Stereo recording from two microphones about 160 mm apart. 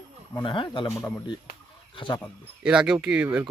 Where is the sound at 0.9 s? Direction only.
20° left (ahead or behind).